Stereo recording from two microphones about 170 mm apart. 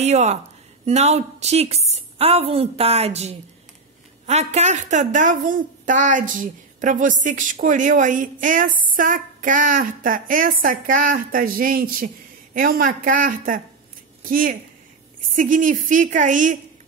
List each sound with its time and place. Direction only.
0.0 s a woman's voice: 40° right (ahead or behind)